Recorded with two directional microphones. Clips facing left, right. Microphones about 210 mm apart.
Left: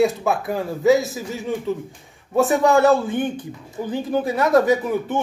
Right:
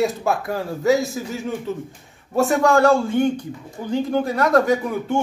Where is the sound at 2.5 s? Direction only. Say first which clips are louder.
Even; 20° left (ahead or behind).